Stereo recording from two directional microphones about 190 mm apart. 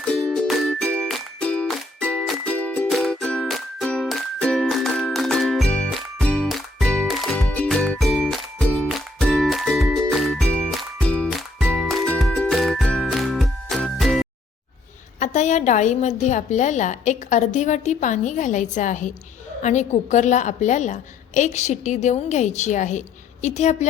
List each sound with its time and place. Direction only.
0.0 s music: centre (ahead or behind)
15.2 s a woman's voice: 40° left (ahead or behind)